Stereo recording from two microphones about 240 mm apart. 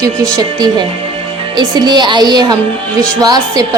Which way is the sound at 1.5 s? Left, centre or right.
Centre.